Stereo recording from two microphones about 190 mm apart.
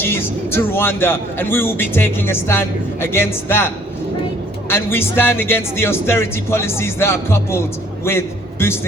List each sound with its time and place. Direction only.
0.0 s a man's voice: 10° left (ahead or behind)
4.7 s a man's voice: 10° left (ahead or behind)